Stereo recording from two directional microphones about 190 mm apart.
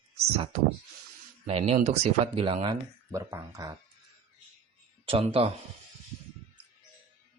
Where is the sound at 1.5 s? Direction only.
35° right (ahead or behind); by 3.8 s 15° right (ahead or behind).